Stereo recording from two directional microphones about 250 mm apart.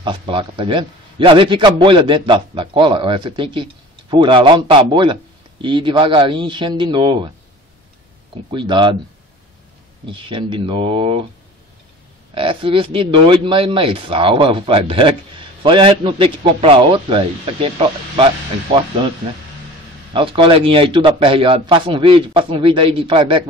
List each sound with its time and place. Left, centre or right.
0.0 s a man's voice: centre
8.5 s a man's voice: centre
10.1 s a man's voice: centre
12.4 s a man's voice: right